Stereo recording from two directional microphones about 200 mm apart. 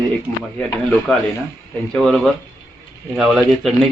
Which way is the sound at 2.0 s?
Centre (ahead or behind).